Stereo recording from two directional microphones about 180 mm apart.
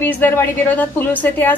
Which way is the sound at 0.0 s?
10° left (ahead or behind).